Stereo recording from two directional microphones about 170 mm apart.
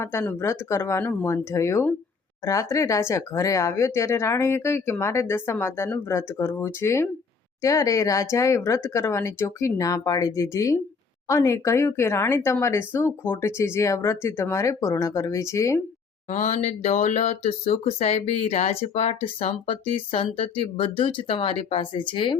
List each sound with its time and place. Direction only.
0.0 s speech: 15° left (ahead or behind)
16.3 s speech: 45° left (ahead or behind)